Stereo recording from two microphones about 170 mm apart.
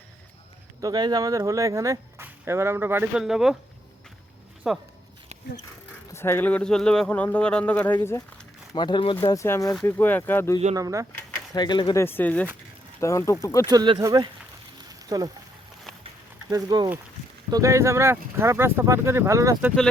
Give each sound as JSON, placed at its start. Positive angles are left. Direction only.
{"t": 0.8, "sound": "speech", "side_deg": -25}
{"t": 4.7, "sound": "speech", "side_deg": -5}
{"t": 6.1, "sound": "speech", "side_deg": 15}
{"t": 8.7, "sound": "speech", "side_deg": 25}
{"t": 10.8, "sound": "speech", "side_deg": -20}
{"t": 11.5, "sound": "speech", "side_deg": 25}
{"t": 11.9, "sound": "speech", "side_deg": 15}
{"t": 13.7, "sound": "speech", "side_deg": -25}
{"t": 14.8, "sound": "a sound", "side_deg": -20}
{"t": 16.5, "sound": "speech", "side_deg": -20}